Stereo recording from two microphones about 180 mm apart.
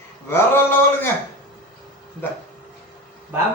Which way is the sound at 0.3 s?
10° left (ahead or behind).